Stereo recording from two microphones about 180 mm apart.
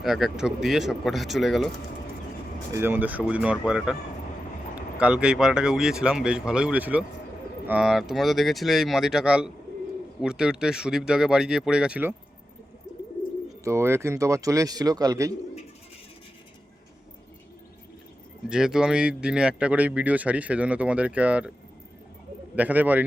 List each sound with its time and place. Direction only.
0.0 s speech: centre (ahead or behind)
2.7 s speech: 10° right (ahead or behind)
13.7 s speech: 15° right (ahead or behind)
18.4 s speech: 5° right (ahead or behind)
22.5 s speech: 10° right (ahead or behind)